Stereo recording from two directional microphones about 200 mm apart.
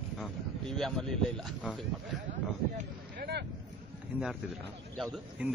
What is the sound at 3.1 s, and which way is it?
Speech, 55° right (ahead or behind).